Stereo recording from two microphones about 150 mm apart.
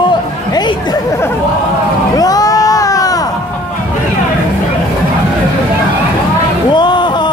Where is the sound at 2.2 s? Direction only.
25° left (ahead or behind).